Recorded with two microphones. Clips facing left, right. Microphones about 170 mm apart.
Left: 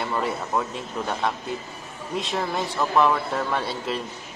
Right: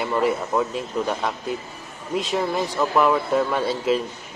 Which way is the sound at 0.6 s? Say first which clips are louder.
Right 4 dB; centre (ahead or behind).